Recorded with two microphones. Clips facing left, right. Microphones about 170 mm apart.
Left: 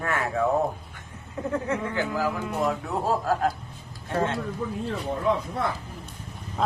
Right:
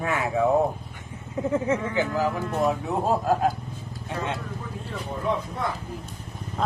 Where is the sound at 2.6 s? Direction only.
20° right (ahead or behind).